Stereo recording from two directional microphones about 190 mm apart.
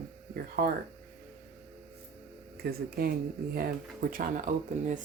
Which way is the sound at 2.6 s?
55° right (ahead or behind).